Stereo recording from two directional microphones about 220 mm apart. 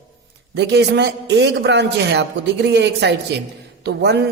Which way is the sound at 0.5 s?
50° right (ahead or behind).